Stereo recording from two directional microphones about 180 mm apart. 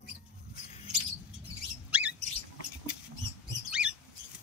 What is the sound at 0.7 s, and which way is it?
Mouse, 35° left (ahead or behind).